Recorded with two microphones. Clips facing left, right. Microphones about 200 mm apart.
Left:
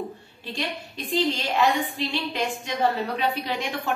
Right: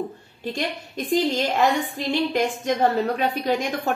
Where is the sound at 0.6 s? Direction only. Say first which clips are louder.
Right 2 dB; 45° right (ahead or behind).